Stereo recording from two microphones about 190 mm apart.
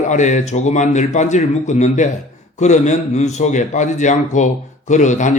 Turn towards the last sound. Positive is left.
turn(degrees=40)  # may be behind; listen again after turning